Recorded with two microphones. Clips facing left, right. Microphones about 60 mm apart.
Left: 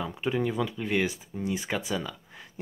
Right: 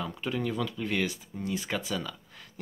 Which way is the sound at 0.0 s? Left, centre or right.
Centre.